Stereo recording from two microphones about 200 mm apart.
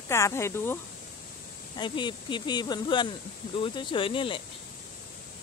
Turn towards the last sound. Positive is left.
turn(degrees=25)  # may be behind; listen again after turning